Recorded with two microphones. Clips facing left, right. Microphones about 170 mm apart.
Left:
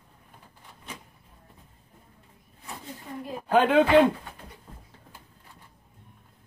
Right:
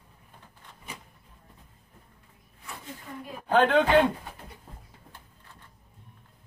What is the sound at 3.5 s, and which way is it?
Speech, 10° left (ahead or behind).